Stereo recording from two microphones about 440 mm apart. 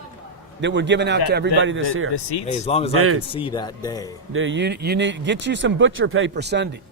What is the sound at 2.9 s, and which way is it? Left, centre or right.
Speech, right.